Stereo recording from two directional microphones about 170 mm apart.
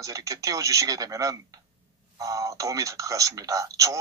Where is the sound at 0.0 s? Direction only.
20° right (ahead or behind).